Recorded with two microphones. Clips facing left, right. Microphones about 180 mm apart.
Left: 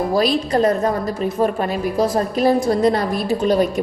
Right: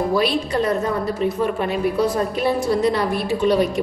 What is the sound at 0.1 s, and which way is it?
A woman's voice, 40° left (ahead or behind).